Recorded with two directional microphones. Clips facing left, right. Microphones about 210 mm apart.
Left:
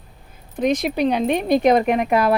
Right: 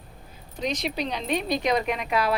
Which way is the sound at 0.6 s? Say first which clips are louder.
Left 9 dB; 55° left (ahead or behind).